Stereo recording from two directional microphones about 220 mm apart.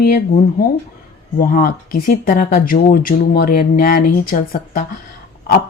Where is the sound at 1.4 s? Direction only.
40° left (ahead or behind).